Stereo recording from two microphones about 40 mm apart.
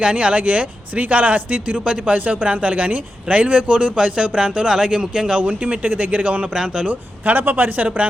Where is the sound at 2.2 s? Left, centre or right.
Right.